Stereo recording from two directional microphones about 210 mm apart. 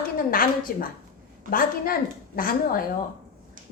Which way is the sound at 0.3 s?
45° left (ahead or behind).